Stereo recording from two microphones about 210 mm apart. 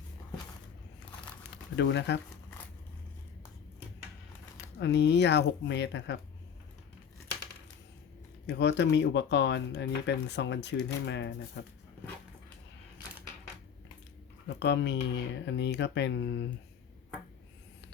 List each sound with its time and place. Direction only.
1.7 s speech: 55° left (ahead or behind)
4.8 s speech: 55° left (ahead or behind)
8.4 s speech: 55° left (ahead or behind)
14.4 s speech: 55° left (ahead or behind)